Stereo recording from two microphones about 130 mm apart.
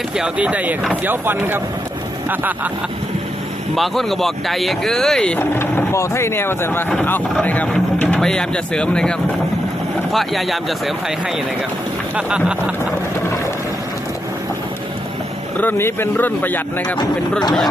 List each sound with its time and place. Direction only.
0.2 s speech: 10° right (ahead or behind)
3.8 s speech: centre (ahead or behind)
5.4 s speech: 15° left (ahead or behind); by 10.9 s centre (ahead or behind)
12.1 s speech: 10° right (ahead or behind)
15.5 s speech: 15° left (ahead or behind)